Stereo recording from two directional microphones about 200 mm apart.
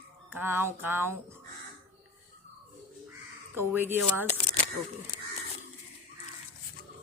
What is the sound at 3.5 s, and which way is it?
Speech, 10° right (ahead or behind).